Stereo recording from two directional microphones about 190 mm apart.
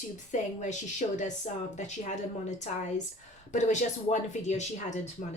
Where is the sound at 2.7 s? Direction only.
40° left (ahead or behind).